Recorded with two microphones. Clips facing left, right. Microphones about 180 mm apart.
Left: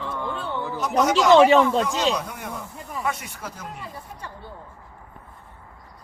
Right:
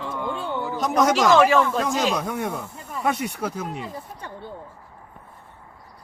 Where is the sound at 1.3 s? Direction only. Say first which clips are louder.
Left 5 dB; 25° left (ahead or behind).